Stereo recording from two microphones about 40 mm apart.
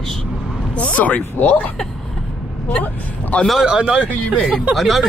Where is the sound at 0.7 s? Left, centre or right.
Left.